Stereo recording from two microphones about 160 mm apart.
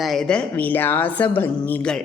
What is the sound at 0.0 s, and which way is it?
A woman's voice, centre (ahead or behind).